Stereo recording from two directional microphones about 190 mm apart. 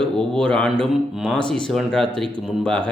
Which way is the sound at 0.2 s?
5° left (ahead or behind).